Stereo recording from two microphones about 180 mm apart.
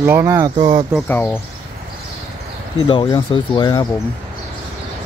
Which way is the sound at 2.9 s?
25° left (ahead or behind).